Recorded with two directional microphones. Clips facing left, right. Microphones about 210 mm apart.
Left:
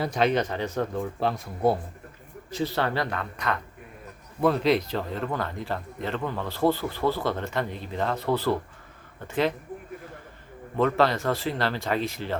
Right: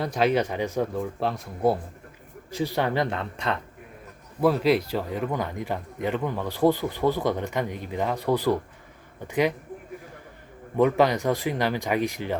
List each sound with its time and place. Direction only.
0.0 s speech: centre (ahead or behind)
2.5 s speech: 15° right (ahead or behind)
4.4 s speech: 5° right (ahead or behind)
10.8 s speech: 15° right (ahead or behind)